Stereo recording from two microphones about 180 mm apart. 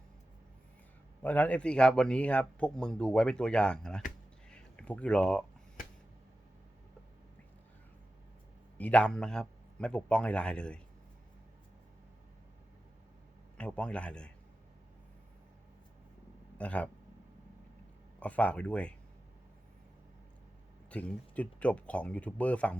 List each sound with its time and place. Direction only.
1.2 s a man's voice: 10° left (ahead or behind)
4.4 s a sound: 5° left (ahead or behind)
8.8 s a man's voice: 5° left (ahead or behind)
13.6 s a man's voice: 5° left (ahead or behind)
16.6 s speech: 5° left (ahead or behind)
18.2 s speech: 10° left (ahead or behind)
20.9 s speech: 10° left (ahead or behind)